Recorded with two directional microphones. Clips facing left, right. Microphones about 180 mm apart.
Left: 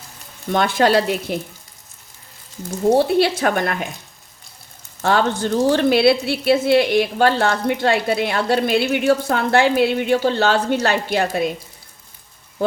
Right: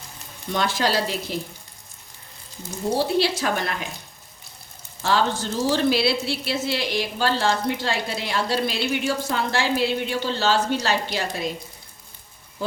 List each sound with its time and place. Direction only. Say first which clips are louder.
0.5 s speech: left 7 dB; 55° left (ahead or behind)
3.0 s speech: left 5 dB; 55° left (ahead or behind)
5.0 s speech: left 4 dB; 55° left (ahead or behind)